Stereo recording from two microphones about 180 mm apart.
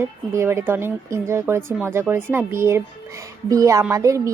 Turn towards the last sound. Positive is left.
turn(degrees=-20)  # may be behind; listen again after turning